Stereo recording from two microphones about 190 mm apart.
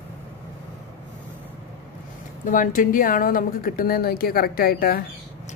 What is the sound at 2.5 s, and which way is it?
Speech, 45° left (ahead or behind).